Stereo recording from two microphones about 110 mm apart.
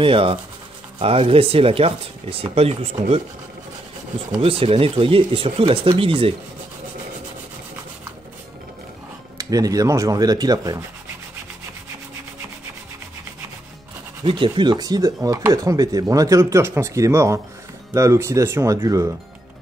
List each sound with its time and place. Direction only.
0.0 s speech: 55° right (ahead or behind)
4.4 s speech: 60° right (ahead or behind)
9.4 s speech: 35° right (ahead or behind)
14.2 s speech: 50° right (ahead or behind); by 19.1 s 30° right (ahead or behind)